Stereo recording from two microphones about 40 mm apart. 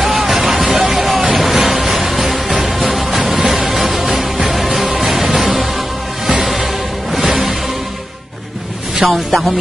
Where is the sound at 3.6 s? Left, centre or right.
Centre.